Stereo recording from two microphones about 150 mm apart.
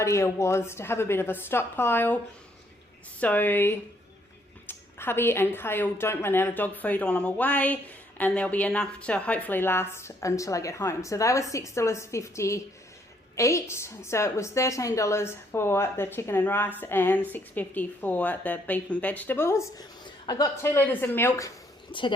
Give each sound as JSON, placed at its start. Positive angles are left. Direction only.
{"t": 0.0, "sound": "speech", "side_deg": 20}
{"t": 3.2, "sound": "a woman's voice", "side_deg": 10}